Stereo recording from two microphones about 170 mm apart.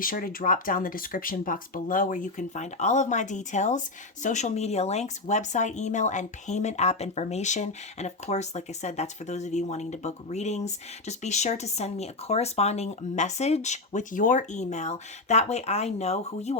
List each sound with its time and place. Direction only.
0.0 s speech: 55° left (ahead or behind); by 16.6 s 40° left (ahead or behind)